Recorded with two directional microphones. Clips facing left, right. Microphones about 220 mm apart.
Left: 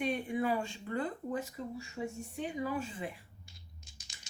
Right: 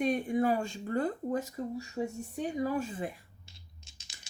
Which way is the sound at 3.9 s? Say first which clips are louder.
Left 2 dB; 25° right (ahead or behind).